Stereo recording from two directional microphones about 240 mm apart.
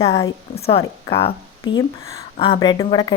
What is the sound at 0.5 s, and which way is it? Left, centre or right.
A woman's voice, left.